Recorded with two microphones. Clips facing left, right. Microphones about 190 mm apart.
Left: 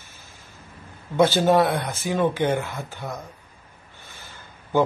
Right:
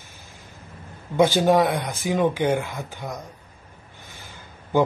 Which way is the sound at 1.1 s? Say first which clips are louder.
Even; 15° right (ahead or behind).